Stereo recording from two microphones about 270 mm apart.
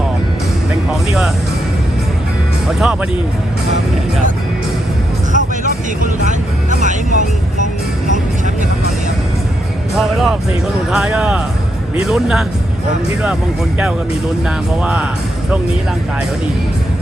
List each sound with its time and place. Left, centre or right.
0.7 s music: centre
2.6 s speech: centre
5.3 s vehicle: right
6.8 s speech: right
10.0 s speech: centre
14.4 s speech: centre